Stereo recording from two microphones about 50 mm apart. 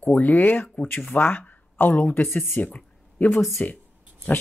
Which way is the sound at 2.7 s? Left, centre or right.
Left.